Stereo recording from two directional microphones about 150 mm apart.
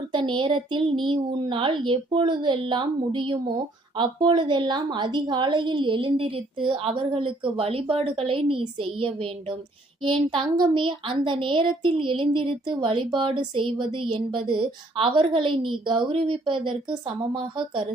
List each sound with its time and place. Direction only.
0.1 s speech: 30° right (ahead or behind)